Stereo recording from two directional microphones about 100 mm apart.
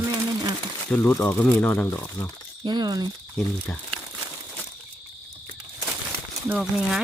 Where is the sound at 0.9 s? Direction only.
25° left (ahead or behind).